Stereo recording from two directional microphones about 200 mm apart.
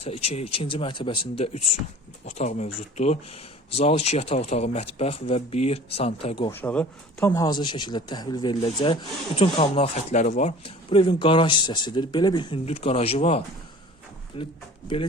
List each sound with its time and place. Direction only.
0.0 s speech: 30° left (ahead or behind)
6.5 s speech: 10° left (ahead or behind); by 14.5 s 25° left (ahead or behind)